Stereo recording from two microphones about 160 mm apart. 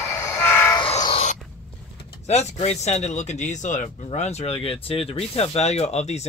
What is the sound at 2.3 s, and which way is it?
Speech, 40° left (ahead or behind).